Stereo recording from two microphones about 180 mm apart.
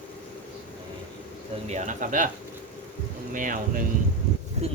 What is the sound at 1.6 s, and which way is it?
Speech, 40° right (ahead or behind).